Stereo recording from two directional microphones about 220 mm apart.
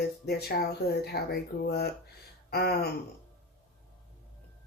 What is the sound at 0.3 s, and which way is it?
Speech, 45° left (ahead or behind).